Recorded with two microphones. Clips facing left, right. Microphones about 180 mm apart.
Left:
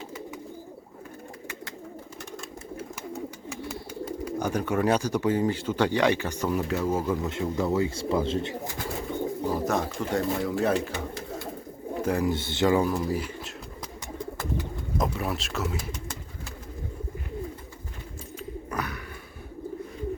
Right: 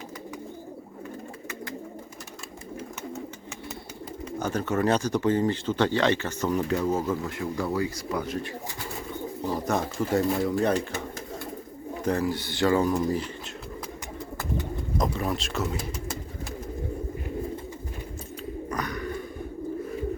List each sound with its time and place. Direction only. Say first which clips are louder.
4.3 s speech: even; 10° left (ahead or behind)
7.1 s speech: left 1 dB; 20° left (ahead or behind)
9.4 s bird: right 1 dB; 10° left (ahead or behind)
9.7 s speech: right 2 dB; 5° right (ahead or behind)
12.0 s speech: even; 10° left (ahead or behind)
12.3 s speech: left 1 dB; 25° left (ahead or behind)
14.9 s speech: right 1 dB; 5° left (ahead or behind)
18.7 s bird: right 4 dB; 5° left (ahead or behind)